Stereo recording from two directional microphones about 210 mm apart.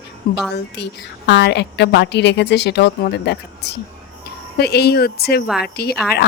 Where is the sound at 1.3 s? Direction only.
55° left (ahead or behind).